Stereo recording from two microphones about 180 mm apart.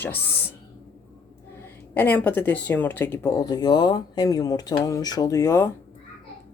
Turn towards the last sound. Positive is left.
turn(degrees=15)  # may be behind; listen again after turning